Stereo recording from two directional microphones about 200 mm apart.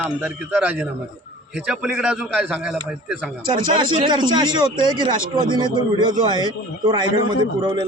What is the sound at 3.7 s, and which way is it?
A man's voice, 25° right (ahead or behind).